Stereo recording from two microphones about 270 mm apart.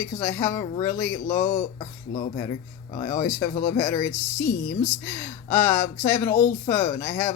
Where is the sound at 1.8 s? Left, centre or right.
Left.